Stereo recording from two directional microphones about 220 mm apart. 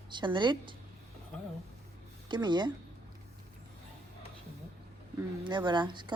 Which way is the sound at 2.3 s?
20° right (ahead or behind).